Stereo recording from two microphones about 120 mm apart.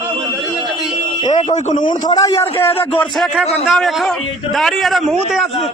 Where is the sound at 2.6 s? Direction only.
50° left (ahead or behind).